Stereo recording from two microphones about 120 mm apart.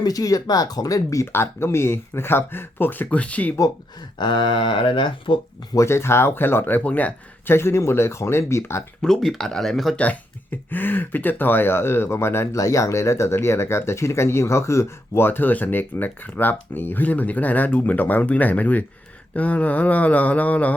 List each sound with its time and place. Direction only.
0.0 s speech: 30° left (ahead or behind); by 3.5 s 10° left (ahead or behind)
4.2 s speech: 40° left (ahead or behind)
5.7 s speech: 20° left (ahead or behind)
9.0 s speech: 5° left (ahead or behind)
10.0 s speech: 15° left (ahead or behind)